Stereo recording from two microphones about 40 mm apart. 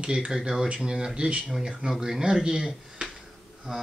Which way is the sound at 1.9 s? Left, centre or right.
Centre.